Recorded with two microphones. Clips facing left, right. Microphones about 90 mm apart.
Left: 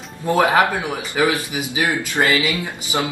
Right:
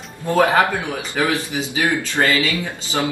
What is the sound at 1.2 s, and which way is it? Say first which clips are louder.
Speech: left 1 dB; 15° left (ahead or behind).